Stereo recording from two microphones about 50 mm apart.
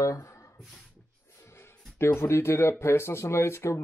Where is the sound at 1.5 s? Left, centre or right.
Left.